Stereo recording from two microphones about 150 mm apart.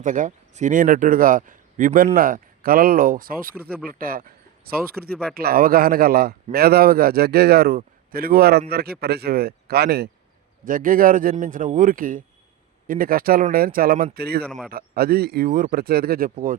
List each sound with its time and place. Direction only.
0.0 s speech: 60° right (ahead or behind); by 4.8 s 80° right
5.3 s speech: 90° right
10.7 s speech: 70° right (ahead or behind); by 14.4 s 90° right
14.4 s a man's voice: centre (ahead or behind)
14.7 s speech: 90° right; by 16.6 s 70° right (ahead or behind)